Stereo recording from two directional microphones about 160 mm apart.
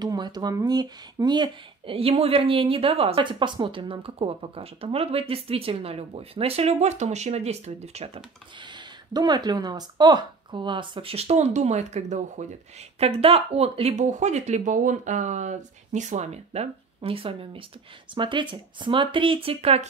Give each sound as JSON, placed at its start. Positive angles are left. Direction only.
{"t": 0.0, "sound": "speech", "side_deg": -25}
{"t": 8.5, "sound": "speech", "side_deg": -30}
{"t": 13.0, "sound": "speech", "side_deg": -35}